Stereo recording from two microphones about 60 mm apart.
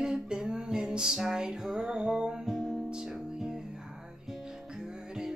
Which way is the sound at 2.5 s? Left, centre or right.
Centre.